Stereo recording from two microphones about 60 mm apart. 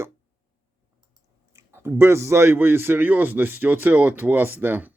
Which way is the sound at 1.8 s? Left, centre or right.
Right.